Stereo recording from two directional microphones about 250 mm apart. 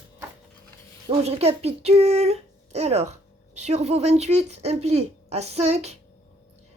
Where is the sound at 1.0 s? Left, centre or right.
Right.